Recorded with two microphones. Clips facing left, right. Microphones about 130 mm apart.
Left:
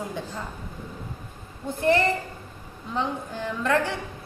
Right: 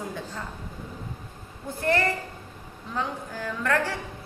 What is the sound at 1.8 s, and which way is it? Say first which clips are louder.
A woman's voice: left 3 dB; 20° left (ahead or behind).